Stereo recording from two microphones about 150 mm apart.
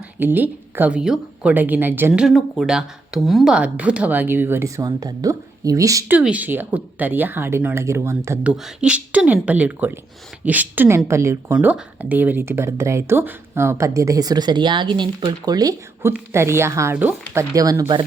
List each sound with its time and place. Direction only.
0.2 s speech: 10° right (ahead or behind)
6.1 s speech: 10° right (ahead or behind)
8.4 s speech: 5° right (ahead or behind)
17.5 s speech: 25° right (ahead or behind)